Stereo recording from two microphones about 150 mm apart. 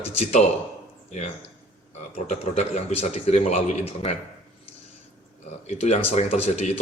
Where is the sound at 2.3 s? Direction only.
50° left (ahead or behind).